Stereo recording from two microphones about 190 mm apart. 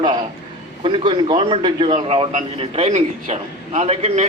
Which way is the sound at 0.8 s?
25° right (ahead or behind).